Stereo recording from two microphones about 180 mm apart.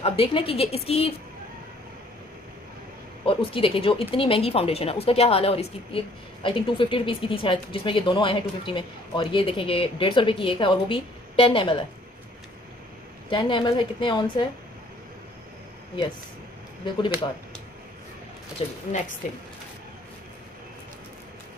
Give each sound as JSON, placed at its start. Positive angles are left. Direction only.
{"t": 0.0, "sound": "speech", "side_deg": 30}
{"t": 3.3, "sound": "speech", "side_deg": 30}
{"t": 13.3, "sound": "a woman's voice", "side_deg": 25}
{"t": 18.6, "sound": "speech", "side_deg": 35}